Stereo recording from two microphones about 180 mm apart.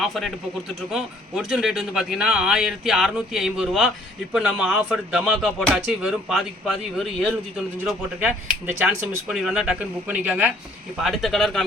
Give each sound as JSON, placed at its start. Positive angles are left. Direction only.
{"t": 0.0, "sound": "speech", "side_deg": 0}